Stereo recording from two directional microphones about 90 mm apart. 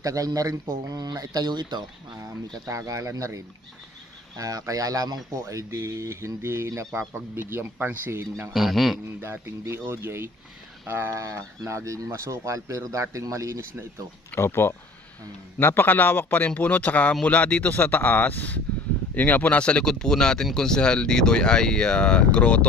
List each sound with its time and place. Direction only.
0.0 s speech: 40° right (ahead or behind)
2.1 s speech: 35° right (ahead or behind)
8.5 s a man's voice: centre (ahead or behind)
9.2 s speech: 25° right (ahead or behind)
14.3 s speech: 25° left (ahead or behind)